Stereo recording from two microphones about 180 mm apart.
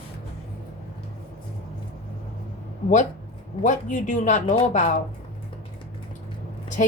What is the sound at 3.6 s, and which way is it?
Speech, 45° left (ahead or behind).